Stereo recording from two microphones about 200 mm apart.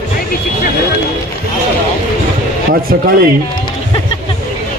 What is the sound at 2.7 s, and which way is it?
Speech, 45° right (ahead or behind).